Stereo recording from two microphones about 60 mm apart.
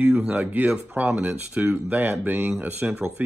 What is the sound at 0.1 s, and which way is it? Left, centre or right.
Speech, right.